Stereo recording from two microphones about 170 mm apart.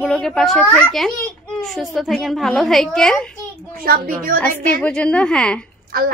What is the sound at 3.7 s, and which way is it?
Speech, 60° right (ahead or behind).